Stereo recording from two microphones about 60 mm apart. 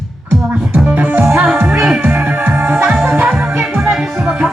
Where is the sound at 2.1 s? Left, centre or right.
Right.